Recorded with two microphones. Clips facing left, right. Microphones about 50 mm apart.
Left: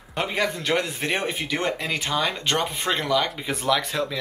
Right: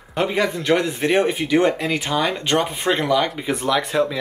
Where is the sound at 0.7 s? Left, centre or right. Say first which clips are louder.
Right 6 dB; centre.